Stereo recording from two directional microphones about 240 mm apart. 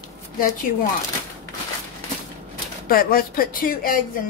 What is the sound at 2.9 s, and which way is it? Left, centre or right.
A woman's voice, left.